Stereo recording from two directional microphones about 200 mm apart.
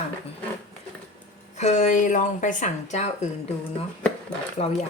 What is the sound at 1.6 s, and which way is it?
Speech, 35° left (ahead or behind).